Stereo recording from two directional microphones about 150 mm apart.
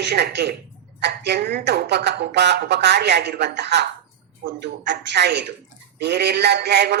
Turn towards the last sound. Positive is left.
turn(degrees=-90)